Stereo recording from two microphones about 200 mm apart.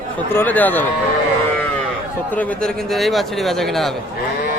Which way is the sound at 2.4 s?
5° left (ahead or behind).